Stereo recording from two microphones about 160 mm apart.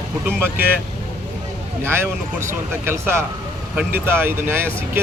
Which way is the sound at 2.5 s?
15° right (ahead or behind).